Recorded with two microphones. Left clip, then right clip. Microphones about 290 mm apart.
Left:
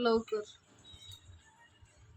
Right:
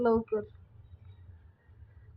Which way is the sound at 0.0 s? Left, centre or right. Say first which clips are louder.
Right 3 dB; centre.